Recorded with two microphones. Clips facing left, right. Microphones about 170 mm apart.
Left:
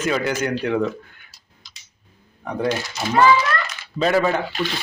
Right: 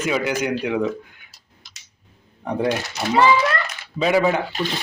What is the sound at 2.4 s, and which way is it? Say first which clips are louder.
Speech: right 2 dB; 25° right (ahead or behind).